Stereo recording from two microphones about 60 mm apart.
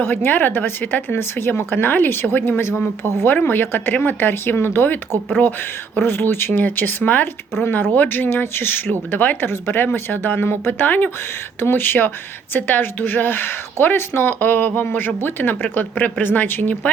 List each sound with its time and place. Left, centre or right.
0.0 s speech: left
9.5 s speech: left